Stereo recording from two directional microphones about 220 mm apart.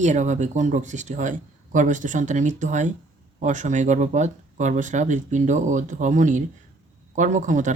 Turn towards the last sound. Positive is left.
turn(degrees=-35)  # may be behind; listen again after turning